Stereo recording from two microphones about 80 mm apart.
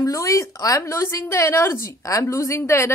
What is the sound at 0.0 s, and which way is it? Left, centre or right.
A woman's voice, left.